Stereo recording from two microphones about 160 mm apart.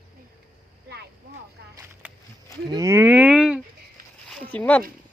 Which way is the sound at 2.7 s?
20° right (ahead or behind).